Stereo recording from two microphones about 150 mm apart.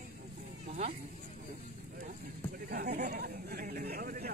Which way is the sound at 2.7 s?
90° right.